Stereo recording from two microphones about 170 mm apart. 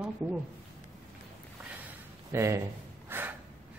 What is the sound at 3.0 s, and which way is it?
Snort, 15° right (ahead or behind).